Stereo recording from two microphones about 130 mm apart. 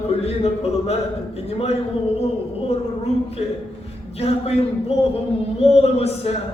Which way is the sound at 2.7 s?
55° left (ahead or behind).